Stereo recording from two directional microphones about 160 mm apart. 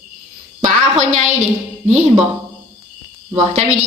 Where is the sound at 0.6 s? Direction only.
45° right (ahead or behind).